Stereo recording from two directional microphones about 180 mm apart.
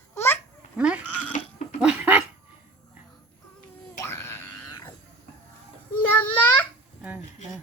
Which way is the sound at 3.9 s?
15° left (ahead or behind).